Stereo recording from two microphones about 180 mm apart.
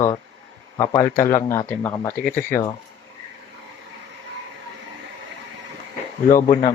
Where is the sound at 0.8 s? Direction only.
15° left (ahead or behind).